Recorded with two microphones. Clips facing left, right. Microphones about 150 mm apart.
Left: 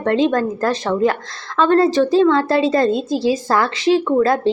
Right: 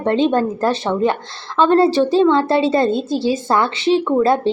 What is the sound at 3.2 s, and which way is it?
Speech, 25° right (ahead or behind).